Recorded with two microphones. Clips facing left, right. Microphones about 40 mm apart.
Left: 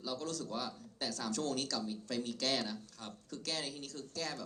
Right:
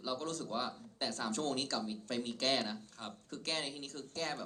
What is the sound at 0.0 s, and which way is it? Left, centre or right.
Speech, right.